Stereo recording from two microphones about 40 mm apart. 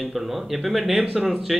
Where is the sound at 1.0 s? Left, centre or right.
Centre.